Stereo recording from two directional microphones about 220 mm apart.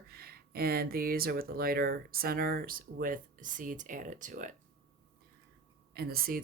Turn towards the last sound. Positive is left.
turn(degrees=-45)  # may be behind; listen again after turning